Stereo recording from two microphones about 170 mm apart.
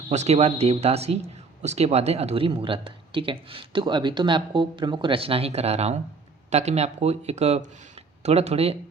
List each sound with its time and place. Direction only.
0.1 s speech: 40° right (ahead or behind)